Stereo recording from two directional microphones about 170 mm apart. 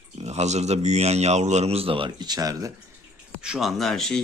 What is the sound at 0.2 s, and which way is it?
A man's voice, 40° right (ahead or behind).